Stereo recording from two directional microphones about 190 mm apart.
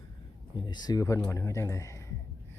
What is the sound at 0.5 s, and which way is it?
A man's voice, 25° left (ahead or behind).